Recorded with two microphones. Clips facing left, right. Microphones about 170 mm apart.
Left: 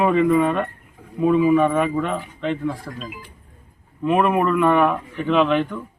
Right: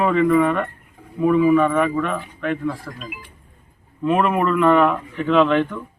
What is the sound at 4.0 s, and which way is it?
Speech, 10° left (ahead or behind).